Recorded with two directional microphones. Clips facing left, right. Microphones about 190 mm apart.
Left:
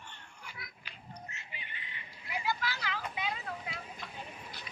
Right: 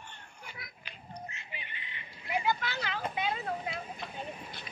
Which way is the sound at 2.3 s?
25° right (ahead or behind).